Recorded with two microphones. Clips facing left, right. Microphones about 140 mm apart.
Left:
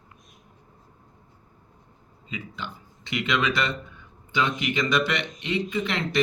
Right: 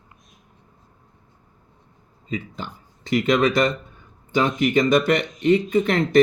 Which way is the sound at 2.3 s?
45° right (ahead or behind).